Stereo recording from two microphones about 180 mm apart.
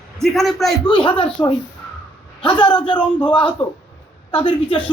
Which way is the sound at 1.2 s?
30° left (ahead or behind).